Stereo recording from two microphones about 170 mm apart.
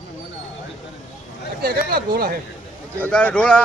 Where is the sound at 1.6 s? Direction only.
65° right (ahead or behind).